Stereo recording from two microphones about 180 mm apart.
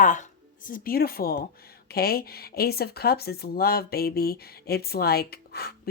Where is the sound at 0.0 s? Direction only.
45° left (ahead or behind).